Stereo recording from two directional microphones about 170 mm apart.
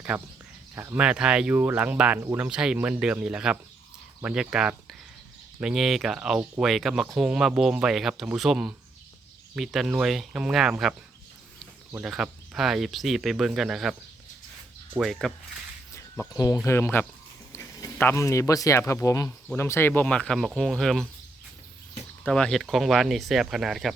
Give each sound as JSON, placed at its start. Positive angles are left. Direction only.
{"t": 0.1, "sound": "speech", "side_deg": -10}
{"t": 14.9, "sound": "speech", "side_deg": 0}
{"t": 16.3, "sound": "speech", "side_deg": 20}
{"t": 22.2, "sound": "speech", "side_deg": 5}